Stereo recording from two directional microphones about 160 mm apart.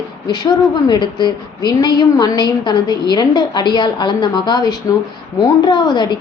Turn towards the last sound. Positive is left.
turn(degrees=25)  # may be behind; listen again after turning